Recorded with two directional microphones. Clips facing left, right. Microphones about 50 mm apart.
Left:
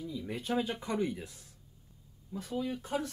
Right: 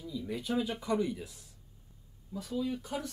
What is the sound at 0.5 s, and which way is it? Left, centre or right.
Speech, left.